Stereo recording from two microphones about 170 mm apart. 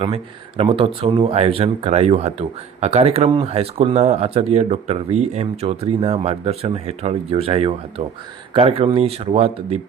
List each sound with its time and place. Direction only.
0.0 s speech: 35° right (ahead or behind)